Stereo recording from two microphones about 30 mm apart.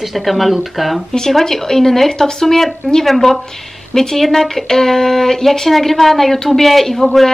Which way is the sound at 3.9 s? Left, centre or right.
Centre.